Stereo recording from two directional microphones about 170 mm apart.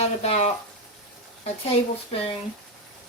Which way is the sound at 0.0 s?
35° left (ahead or behind).